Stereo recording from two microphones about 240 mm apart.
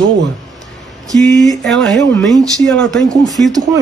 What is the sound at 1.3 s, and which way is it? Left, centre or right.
Speech, centre.